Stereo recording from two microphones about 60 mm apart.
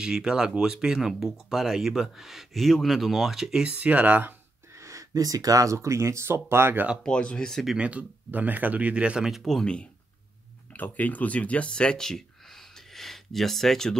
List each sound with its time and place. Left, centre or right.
0.0 s speech: centre
3.6 s speech: right
4.7 s speech: right
7.0 s speech: centre
7.8 s speech: right
9.3 s speech: centre
10.7 s speech: left; by 13.9 s centre